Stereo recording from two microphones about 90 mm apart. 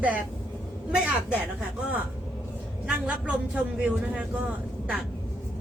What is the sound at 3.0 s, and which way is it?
A man's voice, 10° right (ahead or behind).